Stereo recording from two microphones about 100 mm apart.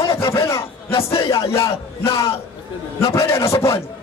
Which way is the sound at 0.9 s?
70° left (ahead or behind).